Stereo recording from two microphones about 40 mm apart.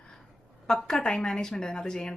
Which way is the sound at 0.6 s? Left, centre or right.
Centre.